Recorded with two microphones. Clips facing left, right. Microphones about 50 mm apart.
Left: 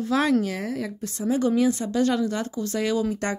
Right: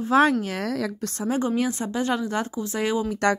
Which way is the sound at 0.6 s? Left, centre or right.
Right.